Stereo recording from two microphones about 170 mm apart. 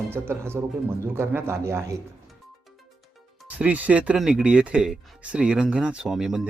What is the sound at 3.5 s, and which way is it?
Speech, 10° right (ahead or behind).